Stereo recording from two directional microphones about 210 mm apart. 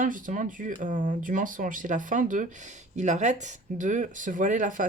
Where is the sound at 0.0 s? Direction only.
40° right (ahead or behind).